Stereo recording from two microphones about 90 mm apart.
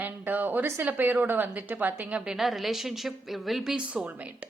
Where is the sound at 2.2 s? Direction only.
5° right (ahead or behind).